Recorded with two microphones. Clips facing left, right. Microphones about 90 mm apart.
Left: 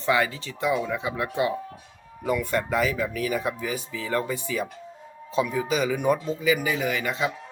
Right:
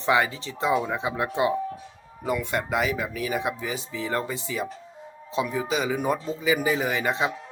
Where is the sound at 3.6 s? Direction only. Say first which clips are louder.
Even; 25° right (ahead or behind).